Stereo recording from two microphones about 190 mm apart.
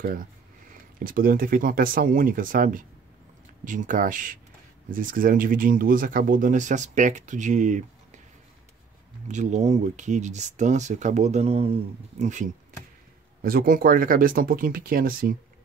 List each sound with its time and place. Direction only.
0.9 s speech: 50° right (ahead or behind)
9.3 s speech: 40° right (ahead or behind)
13.4 s speech: 50° right (ahead or behind)